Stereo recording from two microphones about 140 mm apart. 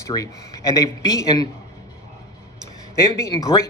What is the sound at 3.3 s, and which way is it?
Speech, 25° left (ahead or behind).